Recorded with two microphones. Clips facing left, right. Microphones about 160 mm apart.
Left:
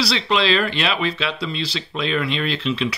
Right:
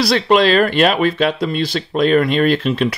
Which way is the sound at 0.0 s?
50° right (ahead or behind).